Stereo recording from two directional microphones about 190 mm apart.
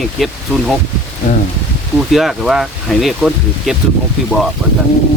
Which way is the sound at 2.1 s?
Centre (ahead or behind).